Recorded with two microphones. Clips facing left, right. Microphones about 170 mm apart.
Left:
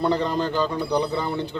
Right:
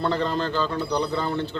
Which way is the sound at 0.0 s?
15° left (ahead or behind).